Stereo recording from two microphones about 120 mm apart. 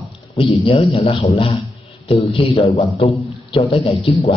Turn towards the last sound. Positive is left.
turn(degrees=50)  # may be behind; listen again after turning